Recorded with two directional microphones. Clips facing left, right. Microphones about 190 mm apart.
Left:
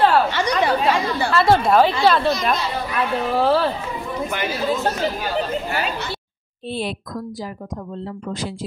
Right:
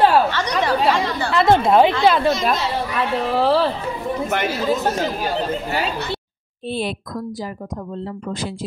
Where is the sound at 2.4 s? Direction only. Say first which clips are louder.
Right 2 dB; centre (ahead or behind).